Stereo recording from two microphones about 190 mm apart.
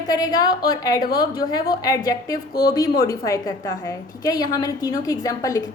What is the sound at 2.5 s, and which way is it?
Speech, 55° left (ahead or behind).